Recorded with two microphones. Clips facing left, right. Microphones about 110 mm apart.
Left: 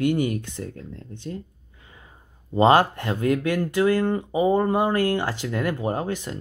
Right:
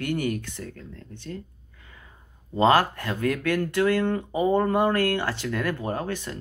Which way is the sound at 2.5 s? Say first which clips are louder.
Left 3 dB; 20° left (ahead or behind).